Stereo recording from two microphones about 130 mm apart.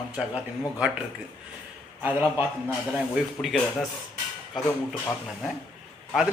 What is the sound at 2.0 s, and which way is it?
Speech, 15° right (ahead or behind).